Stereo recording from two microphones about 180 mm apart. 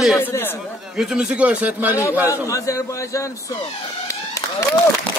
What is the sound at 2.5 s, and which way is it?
Speech, 15° left (ahead or behind).